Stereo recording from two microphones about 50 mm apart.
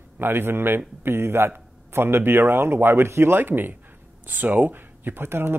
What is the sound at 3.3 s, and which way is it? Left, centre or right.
Speech, right.